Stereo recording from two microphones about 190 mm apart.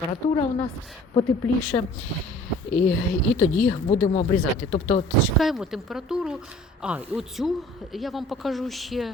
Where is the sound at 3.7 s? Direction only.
30° left (ahead or behind).